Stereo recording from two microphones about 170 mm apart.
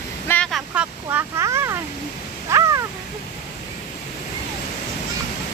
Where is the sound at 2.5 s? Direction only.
20° right (ahead or behind).